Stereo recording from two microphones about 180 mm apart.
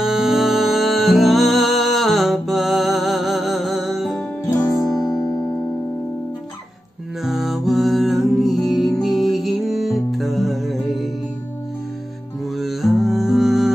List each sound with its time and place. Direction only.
0.0 s music: centre (ahead or behind)
7.2 s music: centre (ahead or behind)
12.5 s music: centre (ahead or behind)